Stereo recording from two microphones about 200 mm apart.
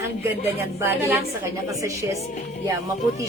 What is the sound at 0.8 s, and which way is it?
Speech, 10° right (ahead or behind).